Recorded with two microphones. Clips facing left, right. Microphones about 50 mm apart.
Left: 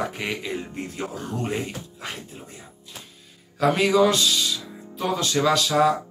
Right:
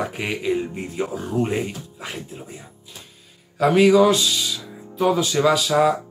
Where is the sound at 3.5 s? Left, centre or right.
Centre.